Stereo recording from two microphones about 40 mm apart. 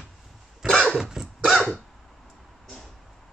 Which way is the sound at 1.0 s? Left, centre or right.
Centre.